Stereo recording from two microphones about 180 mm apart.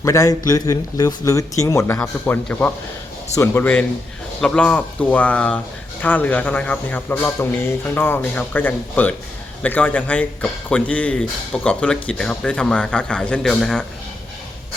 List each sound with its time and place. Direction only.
0.0 s a man's voice: 15° left (ahead or behind); by 13.8 s centre (ahead or behind)